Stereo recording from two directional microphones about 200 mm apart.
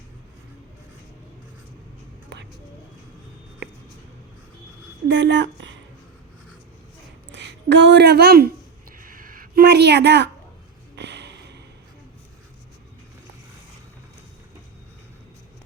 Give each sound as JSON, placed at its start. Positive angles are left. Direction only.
{"t": 5.0, "sound": "speech", "side_deg": -65}
{"t": 7.3, "sound": "speech", "side_deg": -60}
{"t": 9.0, "sound": "a sound", "side_deg": -45}